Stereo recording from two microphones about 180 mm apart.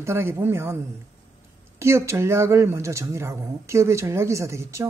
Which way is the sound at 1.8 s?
15° right (ahead or behind).